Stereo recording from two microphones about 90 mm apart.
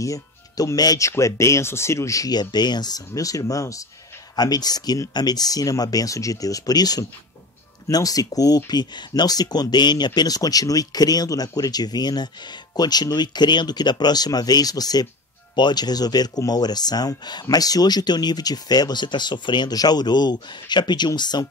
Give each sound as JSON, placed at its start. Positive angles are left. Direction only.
{"t": 0.0, "sound": "speech", "side_deg": 40}